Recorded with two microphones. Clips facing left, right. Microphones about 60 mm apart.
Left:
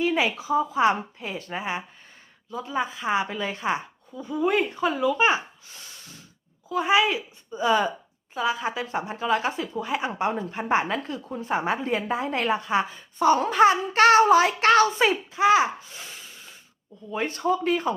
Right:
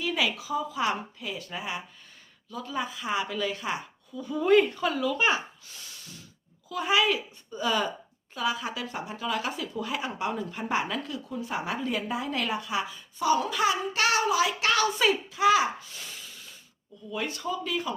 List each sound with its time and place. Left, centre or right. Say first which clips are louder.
0.0 s a woman's voice: left 5 dB; left
4.4 s a woman's voice: right 2 dB; centre
6.7 s a woman's voice: left 4 dB; left
17.1 s speech: left 7 dB; left